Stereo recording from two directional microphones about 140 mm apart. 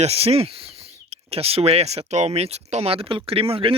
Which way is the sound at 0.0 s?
45° right (ahead or behind).